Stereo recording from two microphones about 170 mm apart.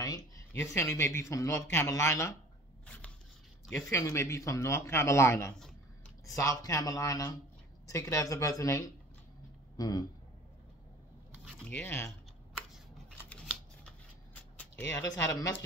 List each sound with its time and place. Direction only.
0.0 s speech: 15° left (ahead or behind)
3.9 s a man's voice: 15° left (ahead or behind)
11.4 s a man's voice: 10° left (ahead or behind)
14.6 s speech: 15° left (ahead or behind)